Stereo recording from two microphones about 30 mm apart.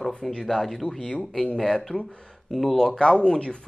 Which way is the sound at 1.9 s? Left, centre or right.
Left.